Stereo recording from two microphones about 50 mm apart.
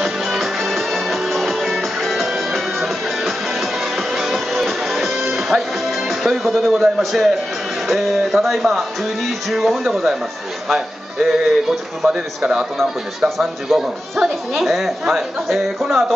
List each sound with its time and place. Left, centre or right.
0.0 s music: centre
7.0 s a woman's voice: centre
13.4 s a woman's voice: centre